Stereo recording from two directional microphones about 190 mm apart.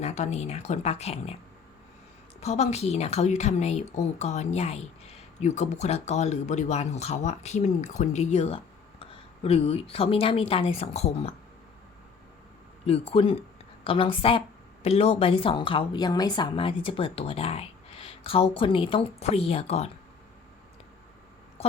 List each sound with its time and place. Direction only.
0.0 s speech: 35° left (ahead or behind)
2.4 s speech: 35° left (ahead or behind)
12.8 s a woman's voice: 30° left (ahead or behind)